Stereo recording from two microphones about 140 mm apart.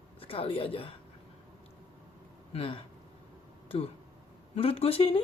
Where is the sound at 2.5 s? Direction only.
40° left (ahead or behind).